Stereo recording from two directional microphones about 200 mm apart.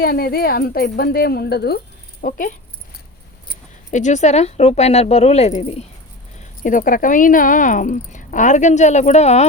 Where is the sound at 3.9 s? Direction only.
35° left (ahead or behind).